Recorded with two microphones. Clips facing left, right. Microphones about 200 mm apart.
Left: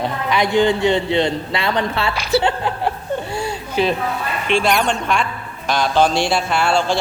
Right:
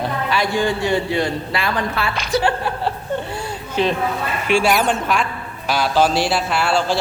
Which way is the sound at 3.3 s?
10° left (ahead or behind).